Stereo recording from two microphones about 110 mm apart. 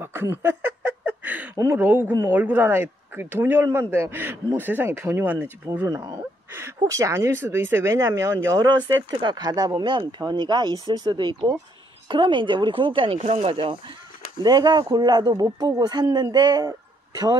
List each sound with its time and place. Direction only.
0.0 s a sound: 20° right (ahead or behind)
1.6 s a man's voice: 20° right (ahead or behind)
5.9 s a woman's voice: 30° right (ahead or behind); by 13.2 s 55° right (ahead or behind)
13.2 s speech: 70° right (ahead or behind)
14.4 s speech: 40° right (ahead or behind)